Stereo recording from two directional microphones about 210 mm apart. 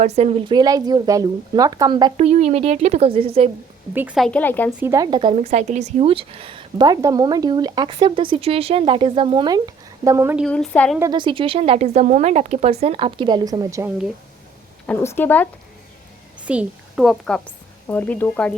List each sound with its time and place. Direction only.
0.0 s speech: 30° right (ahead or behind)
3.9 s speech: 5° right (ahead or behind)
4.8 s speech: 15° right (ahead or behind)
10.4 s speech: 5° left (ahead or behind)
11.0 s speech: 20° right (ahead or behind)
14.8 s speech: 10° left (ahead or behind)
16.5 s a woman's voice: 5° right (ahead or behind)